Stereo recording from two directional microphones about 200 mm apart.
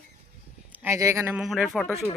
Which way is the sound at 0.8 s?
15° right (ahead or behind).